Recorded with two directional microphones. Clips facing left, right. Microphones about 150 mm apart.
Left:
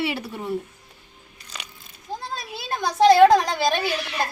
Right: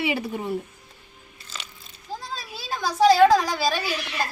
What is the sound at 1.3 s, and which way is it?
Crunch, 15° left (ahead or behind).